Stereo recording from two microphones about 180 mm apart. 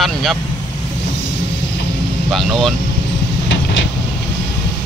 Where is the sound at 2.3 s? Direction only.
Centre (ahead or behind).